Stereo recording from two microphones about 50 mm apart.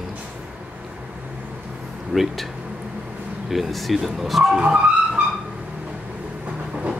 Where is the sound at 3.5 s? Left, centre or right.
Centre.